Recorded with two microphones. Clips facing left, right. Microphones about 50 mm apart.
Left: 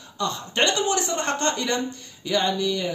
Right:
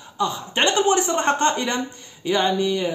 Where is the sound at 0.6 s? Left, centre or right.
Right.